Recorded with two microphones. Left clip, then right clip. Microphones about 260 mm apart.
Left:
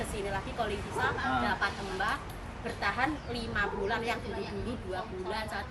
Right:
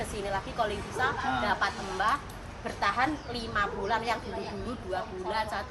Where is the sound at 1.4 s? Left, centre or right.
Centre.